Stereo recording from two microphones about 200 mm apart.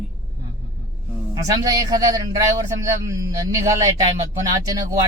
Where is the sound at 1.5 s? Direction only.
20° right (ahead or behind).